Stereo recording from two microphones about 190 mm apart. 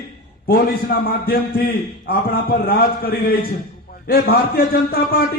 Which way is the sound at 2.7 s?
55° left (ahead or behind).